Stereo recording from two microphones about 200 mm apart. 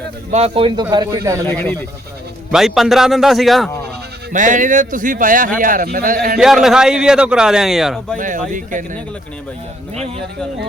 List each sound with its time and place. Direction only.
0.3 s a man's voice: 30° right (ahead or behind)
1.5 s a man's voice: 10° left (ahead or behind)
4.3 s speech: 40° right (ahead or behind)
6.4 s a man's voice: centre (ahead or behind)
8.2 s speech: 40° right (ahead or behind)